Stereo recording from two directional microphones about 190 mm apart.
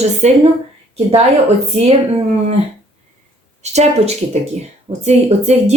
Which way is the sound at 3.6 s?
35° right (ahead or behind).